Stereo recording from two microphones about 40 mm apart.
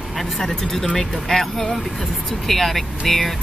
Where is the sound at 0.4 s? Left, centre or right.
Centre.